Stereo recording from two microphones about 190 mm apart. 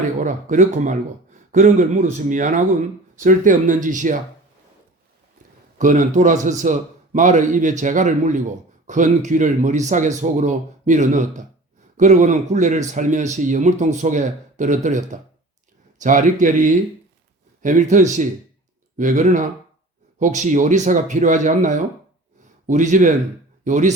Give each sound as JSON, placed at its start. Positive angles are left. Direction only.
{"t": 0.2, "sound": "a man's voice", "side_deg": -40}
{"t": 5.7, "sound": "a man's voice", "side_deg": -45}